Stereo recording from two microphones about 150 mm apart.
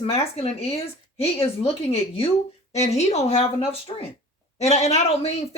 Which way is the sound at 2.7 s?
45° left (ahead or behind).